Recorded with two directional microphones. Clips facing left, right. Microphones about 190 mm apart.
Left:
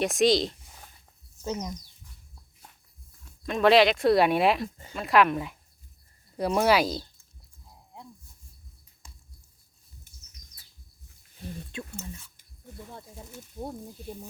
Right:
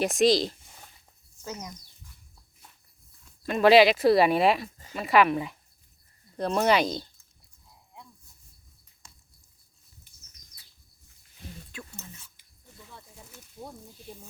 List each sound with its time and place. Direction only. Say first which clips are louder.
0.0 s speech: even; centre (ahead or behind)
1.5 s speech: left 6 dB; 25° left (ahead or behind)
3.4 s speech: right 2 dB; centre (ahead or behind)
6.3 s speech: left 1 dB; 10° left (ahead or behind)
11.7 s speech: left 5 dB; 25° left (ahead or behind)
12.4 s a sound: left 8 dB; 50° left (ahead or behind)